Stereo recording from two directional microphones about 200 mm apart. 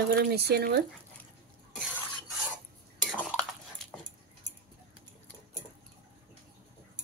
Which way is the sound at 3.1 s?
5° left (ahead or behind).